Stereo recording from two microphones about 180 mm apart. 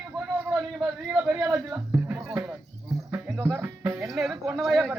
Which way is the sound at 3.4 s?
15° right (ahead or behind).